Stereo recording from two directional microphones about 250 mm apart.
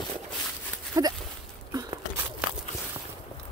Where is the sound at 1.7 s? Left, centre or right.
Centre.